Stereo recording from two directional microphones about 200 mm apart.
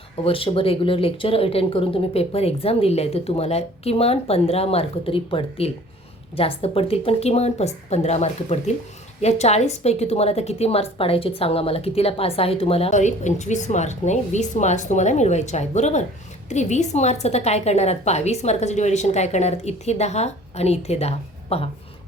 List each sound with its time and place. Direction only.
0.3 s a woman's voice: 25° left (ahead or behind)